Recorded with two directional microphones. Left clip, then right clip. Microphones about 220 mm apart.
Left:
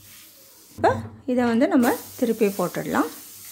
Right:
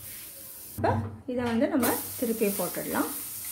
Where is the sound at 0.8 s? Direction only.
45° left (ahead or behind).